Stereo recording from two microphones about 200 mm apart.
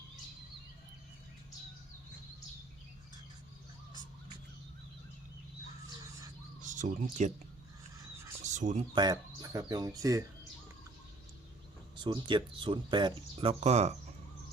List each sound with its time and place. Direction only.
6.6 s speech: 40° right (ahead or behind)
8.4 s a sound: 35° right (ahead or behind)
9.0 s speech: 20° right (ahead or behind)
11.9 s speech: 25° right (ahead or behind)